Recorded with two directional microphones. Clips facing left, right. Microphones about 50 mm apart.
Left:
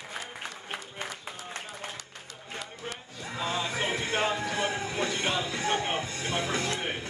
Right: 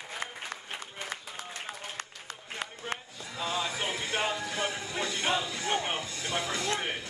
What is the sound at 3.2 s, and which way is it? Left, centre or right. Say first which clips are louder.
Music: left 3 dB; left.